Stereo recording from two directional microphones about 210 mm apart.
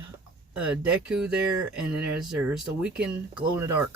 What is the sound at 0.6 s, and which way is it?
Speech, 5° right (ahead or behind).